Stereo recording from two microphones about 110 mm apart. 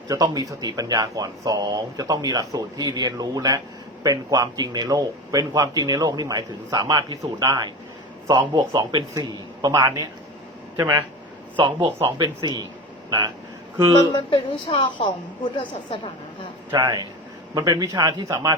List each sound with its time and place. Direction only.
0.1 s a man's voice: 35° right (ahead or behind)
11.5 s a man's voice: 45° right (ahead or behind)
14.1 s a woman's voice: 50° left (ahead or behind)
16.7 s a man's voice: 30° right (ahead or behind)